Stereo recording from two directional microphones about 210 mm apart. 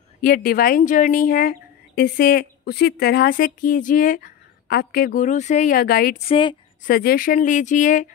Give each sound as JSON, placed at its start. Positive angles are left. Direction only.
{"t": 0.2, "sound": "speech", "side_deg": 40}
{"t": 6.1, "sound": "a woman's voice", "side_deg": 25}
{"t": 6.8, "sound": "speech", "side_deg": 45}